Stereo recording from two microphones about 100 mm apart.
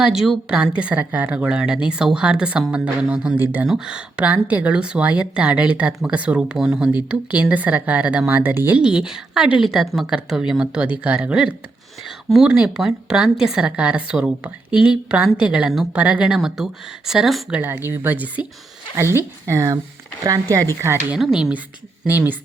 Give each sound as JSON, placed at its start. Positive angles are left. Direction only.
{"t": 0.0, "sound": "a woman's voice", "side_deg": -5}
{"t": 3.3, "sound": "speech", "side_deg": -20}
{"t": 3.7, "sound": "a woman's voice", "side_deg": -5}
{"t": 8.8, "sound": "a woman's voice", "side_deg": -10}
{"t": 17.6, "sound": "speech", "side_deg": -20}
{"t": 21.2, "sound": "a woman's voice", "side_deg": 0}
{"t": 22.0, "sound": "a woman's voice", "side_deg": -15}